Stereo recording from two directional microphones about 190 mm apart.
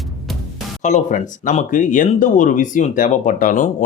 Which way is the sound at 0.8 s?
40° left (ahead or behind).